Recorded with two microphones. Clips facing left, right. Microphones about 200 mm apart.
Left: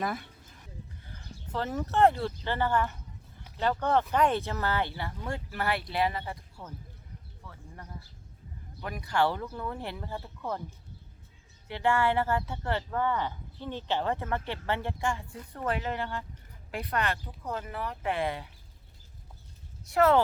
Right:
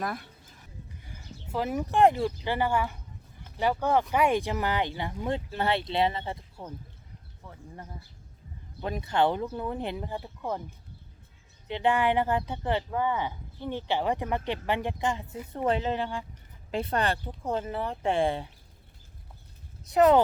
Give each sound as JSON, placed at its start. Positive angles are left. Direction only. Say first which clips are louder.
{"t": 0.0, "sound": "speech", "louder": "left 1 dB", "side_deg": 0}
{"t": 1.0, "sound": "speech", "louder": "right 1 dB", "side_deg": -10}
{"t": 8.8, "sound": "speech", "louder": "right 2 dB", "side_deg": -25}
{"t": 11.7, "sound": "speech", "louder": "right 2 dB", "side_deg": -20}
{"t": 16.7, "sound": "speech", "louder": "right 4 dB", "side_deg": -30}
{"t": 19.8, "sound": "speech", "louder": "right 3 dB", "side_deg": -20}